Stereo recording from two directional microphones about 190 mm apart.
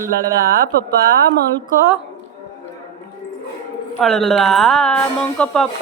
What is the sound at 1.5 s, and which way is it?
Speech, 20° left (ahead or behind).